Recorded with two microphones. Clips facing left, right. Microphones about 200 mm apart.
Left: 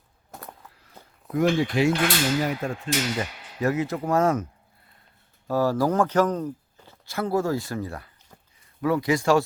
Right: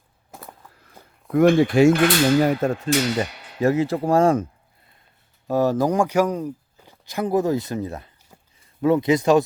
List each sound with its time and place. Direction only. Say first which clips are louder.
1.3 s speech: right 7 dB; 60° right (ahead or behind); by 4.4 s 30° right (ahead or behind)
5.5 s speech: right 3 dB; 20° right (ahead or behind)
8.3 s a sound: right 1 dB; 10° right (ahead or behind)
8.8 s speech: right 5 dB; 20° right (ahead or behind)